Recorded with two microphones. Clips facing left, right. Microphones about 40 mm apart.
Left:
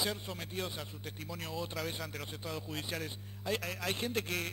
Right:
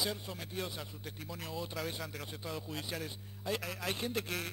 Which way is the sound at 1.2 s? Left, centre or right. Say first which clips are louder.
Left 2 dB; centre.